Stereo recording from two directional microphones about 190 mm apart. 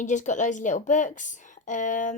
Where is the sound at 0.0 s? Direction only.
40° left (ahead or behind).